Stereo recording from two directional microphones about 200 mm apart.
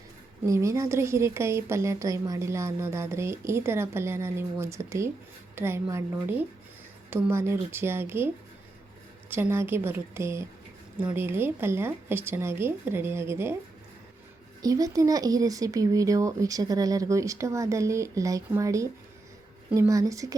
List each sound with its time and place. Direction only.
0.4 s speech: 15° right (ahead or behind)
9.3 s speech: 10° right (ahead or behind)
14.6 s speech: 20° right (ahead or behind)